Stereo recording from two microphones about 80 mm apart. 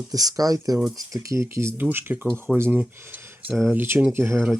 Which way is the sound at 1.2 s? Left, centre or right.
Right.